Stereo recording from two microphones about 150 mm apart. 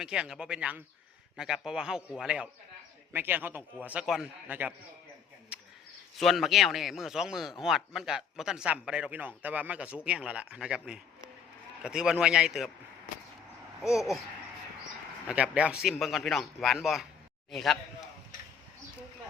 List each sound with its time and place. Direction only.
0.0 s a man's voice: 5° right (ahead or behind)
5.5 s a sound: 5° right (ahead or behind)
6.1 s a man's voice: centre (ahead or behind)
13.8 s a man's voice: centre (ahead or behind)
15.3 s a man's voice: 10° right (ahead or behind)